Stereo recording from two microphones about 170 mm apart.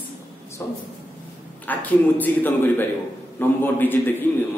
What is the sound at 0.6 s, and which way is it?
A man's voice, 15° left (ahead or behind).